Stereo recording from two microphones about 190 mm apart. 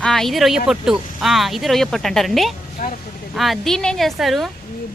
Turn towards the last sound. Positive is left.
turn(degrees=0)  # may be behind; listen again after turning